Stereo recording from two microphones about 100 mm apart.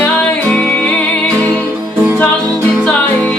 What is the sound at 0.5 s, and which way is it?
Music, 15° left (ahead or behind).